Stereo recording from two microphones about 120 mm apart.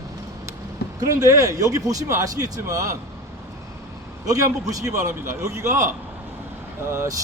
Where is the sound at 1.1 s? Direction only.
25° right (ahead or behind).